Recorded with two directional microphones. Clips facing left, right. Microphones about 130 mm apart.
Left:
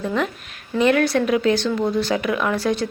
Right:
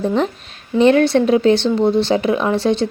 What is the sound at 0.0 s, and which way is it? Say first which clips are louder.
A woman's voice: right 5 dB; 30° right (ahead or behind).